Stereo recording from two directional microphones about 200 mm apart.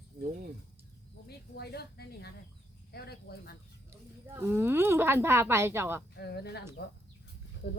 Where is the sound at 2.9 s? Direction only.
50° left (ahead or behind).